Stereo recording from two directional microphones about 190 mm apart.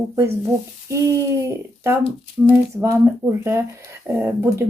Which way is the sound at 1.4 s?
15° right (ahead or behind).